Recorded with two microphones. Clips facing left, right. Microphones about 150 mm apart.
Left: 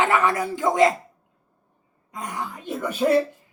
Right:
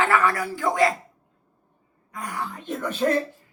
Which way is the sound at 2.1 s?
20° left (ahead or behind).